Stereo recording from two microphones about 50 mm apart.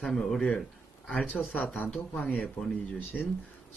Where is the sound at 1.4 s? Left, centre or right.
Left.